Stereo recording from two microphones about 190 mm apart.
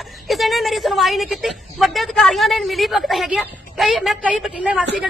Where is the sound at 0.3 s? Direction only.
Centre (ahead or behind).